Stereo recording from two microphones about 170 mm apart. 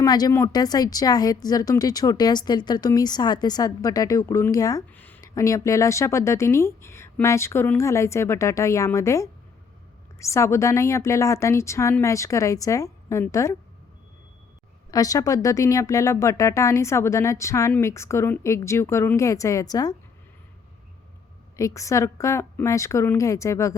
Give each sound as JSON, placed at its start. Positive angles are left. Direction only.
{"t": 0.0, "sound": "a woman's voice", "side_deg": 20}
{"t": 14.8, "sound": "speech", "side_deg": 20}
{"t": 21.5, "sound": "speech", "side_deg": 20}